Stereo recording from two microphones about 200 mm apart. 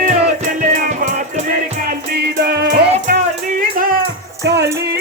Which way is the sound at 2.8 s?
30° right (ahead or behind).